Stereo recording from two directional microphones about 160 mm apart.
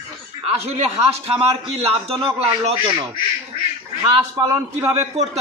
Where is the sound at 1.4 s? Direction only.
40° right (ahead or behind).